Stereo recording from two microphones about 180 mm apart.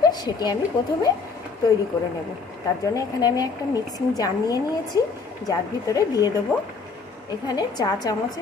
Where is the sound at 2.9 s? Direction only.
20° left (ahead or behind).